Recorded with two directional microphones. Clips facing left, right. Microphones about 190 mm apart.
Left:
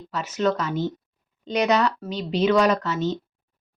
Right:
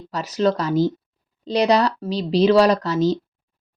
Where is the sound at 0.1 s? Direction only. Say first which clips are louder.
Right 3 dB; 35° right (ahead or behind).